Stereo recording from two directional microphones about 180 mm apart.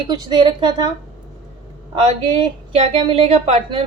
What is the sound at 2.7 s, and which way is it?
A woman's voice, 30° right (ahead or behind).